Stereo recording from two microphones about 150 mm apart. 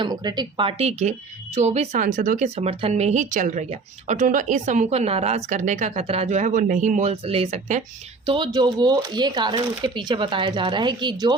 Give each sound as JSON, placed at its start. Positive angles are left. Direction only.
{"t": 0.0, "sound": "speech", "side_deg": -30}
{"t": 0.8, "sound": "speech", "side_deg": -45}
{"t": 8.3, "sound": "speech", "side_deg": -30}